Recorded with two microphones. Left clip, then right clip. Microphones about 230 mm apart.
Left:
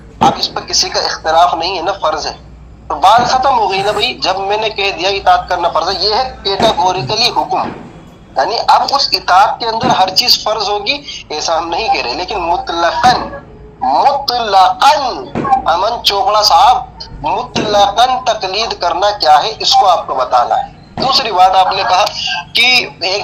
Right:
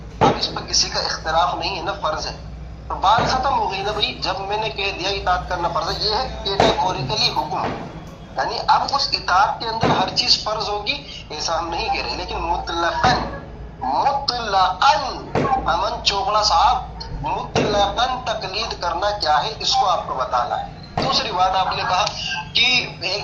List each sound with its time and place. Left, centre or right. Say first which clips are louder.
0.2 s speech: left 6 dB; left